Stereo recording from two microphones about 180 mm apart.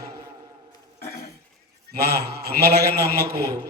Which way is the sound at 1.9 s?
60° right (ahead or behind).